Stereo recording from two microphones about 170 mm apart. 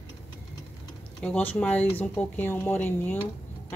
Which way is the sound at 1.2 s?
10° left (ahead or behind).